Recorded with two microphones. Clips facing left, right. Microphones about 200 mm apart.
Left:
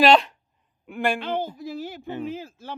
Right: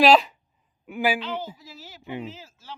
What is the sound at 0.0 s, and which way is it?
A man's voice, centre (ahead or behind).